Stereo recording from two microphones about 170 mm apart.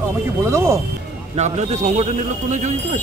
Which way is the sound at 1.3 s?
40° right (ahead or behind).